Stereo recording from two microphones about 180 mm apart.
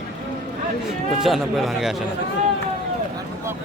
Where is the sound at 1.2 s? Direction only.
Centre (ahead or behind).